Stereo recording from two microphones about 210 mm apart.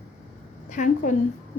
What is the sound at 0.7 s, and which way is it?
Speech, 35° left (ahead or behind).